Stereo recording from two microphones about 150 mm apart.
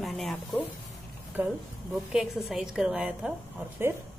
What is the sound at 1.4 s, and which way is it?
A woman's voice, 10° right (ahead or behind).